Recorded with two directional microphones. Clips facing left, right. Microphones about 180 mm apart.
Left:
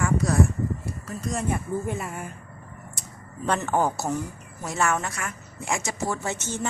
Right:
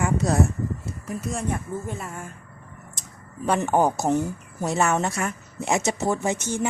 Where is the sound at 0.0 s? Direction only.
25° right (ahead or behind).